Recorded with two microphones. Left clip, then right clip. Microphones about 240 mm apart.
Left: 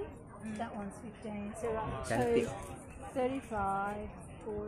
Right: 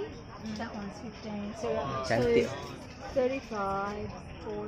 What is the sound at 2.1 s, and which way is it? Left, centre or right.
Speech, centre.